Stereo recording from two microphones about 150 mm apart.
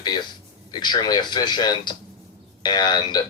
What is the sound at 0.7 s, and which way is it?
Speech, 30° left (ahead or behind).